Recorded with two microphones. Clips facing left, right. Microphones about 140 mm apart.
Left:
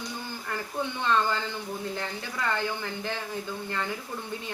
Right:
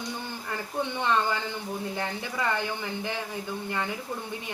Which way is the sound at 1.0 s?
15° right (ahead or behind).